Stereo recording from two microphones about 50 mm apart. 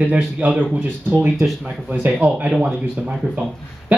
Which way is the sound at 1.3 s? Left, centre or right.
Centre.